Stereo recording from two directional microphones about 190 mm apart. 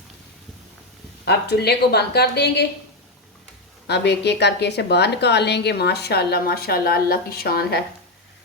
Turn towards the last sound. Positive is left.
turn(degrees=55)  # may be behind; listen again after turning